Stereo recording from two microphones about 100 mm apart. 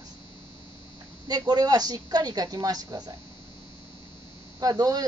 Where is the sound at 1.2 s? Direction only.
40° right (ahead or behind).